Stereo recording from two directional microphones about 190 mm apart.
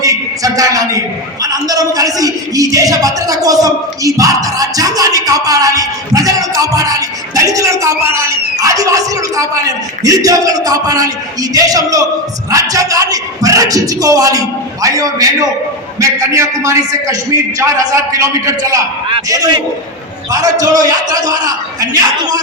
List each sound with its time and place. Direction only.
0.0 s a man's voice: 20° right (ahead or behind)